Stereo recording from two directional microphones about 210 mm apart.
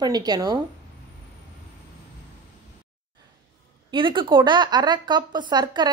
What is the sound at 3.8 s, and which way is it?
Speech, 25° right (ahead or behind).